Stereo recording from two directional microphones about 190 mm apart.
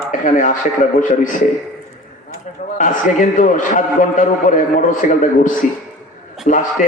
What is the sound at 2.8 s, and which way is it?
A man's voice, 40° left (ahead or behind).